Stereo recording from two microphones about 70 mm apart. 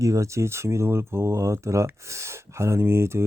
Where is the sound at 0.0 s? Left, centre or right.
Right.